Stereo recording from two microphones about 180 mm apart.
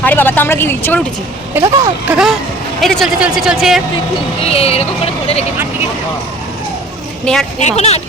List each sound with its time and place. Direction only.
0.0 s speech: 10° left (ahead or behind)
1.5 s speech: 15° right (ahead or behind)
4.4 s speech: 35° left (ahead or behind)
7.6 s speech: 35° left (ahead or behind)